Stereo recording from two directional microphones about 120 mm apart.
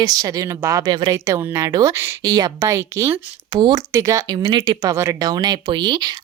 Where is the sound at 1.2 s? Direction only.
20° right (ahead or behind).